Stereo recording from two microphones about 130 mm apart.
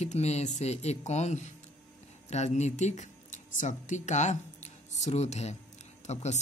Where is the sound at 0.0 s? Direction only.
60° left (ahead or behind).